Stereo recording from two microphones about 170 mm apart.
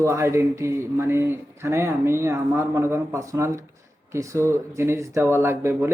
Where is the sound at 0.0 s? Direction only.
15° right (ahead or behind).